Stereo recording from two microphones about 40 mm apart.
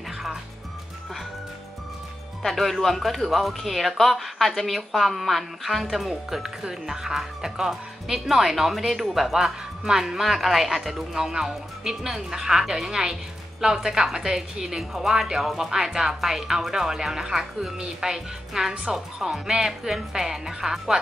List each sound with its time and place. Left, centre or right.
2.4 s a woman's voice: centre